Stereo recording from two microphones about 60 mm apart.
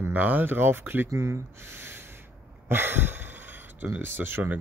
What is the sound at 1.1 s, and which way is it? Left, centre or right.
Speech, right.